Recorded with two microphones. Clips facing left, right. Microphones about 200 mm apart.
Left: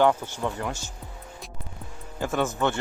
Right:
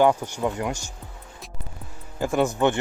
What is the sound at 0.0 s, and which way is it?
Speech, 15° right (ahead or behind).